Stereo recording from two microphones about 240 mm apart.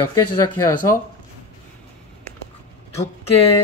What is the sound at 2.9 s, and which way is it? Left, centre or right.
Speech, left.